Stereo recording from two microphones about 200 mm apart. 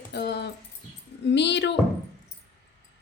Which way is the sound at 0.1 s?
55° left (ahead or behind).